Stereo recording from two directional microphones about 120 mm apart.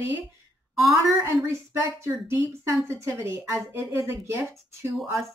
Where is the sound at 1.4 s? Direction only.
25° right (ahead or behind).